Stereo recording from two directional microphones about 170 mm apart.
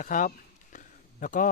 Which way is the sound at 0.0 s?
50° left (ahead or behind).